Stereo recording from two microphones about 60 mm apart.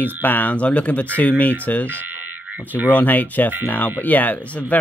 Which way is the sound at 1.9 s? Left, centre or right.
Right.